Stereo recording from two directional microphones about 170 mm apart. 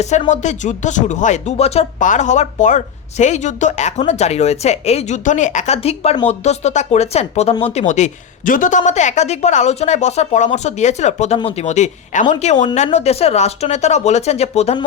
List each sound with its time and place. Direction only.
0.0 s speech: 45° left (ahead or behind)